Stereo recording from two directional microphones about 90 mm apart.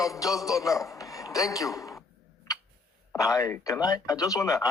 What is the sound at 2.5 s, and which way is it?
Tick, 40° left (ahead or behind).